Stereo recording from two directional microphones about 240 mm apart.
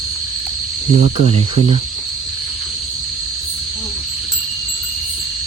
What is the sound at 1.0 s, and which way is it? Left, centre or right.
Cricket, right.